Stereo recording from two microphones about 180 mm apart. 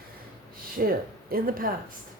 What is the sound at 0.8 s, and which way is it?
Speech, 55° right (ahead or behind).